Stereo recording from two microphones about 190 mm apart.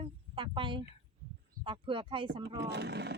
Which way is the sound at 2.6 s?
60° right (ahead or behind).